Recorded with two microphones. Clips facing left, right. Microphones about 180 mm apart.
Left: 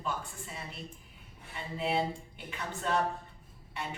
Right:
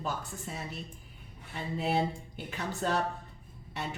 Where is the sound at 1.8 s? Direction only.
40° right (ahead or behind).